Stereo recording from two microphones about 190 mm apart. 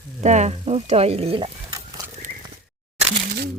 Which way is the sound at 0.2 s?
40° right (ahead or behind).